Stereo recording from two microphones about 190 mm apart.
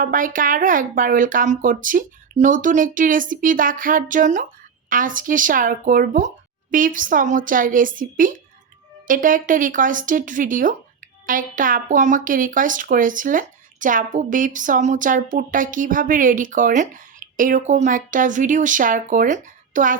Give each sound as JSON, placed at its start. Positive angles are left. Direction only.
{"t": 0.0, "sound": "speech", "side_deg": -45}